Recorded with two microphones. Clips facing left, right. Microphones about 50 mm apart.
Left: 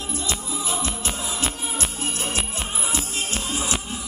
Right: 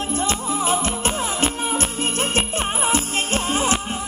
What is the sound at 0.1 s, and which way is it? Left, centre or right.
Music, right.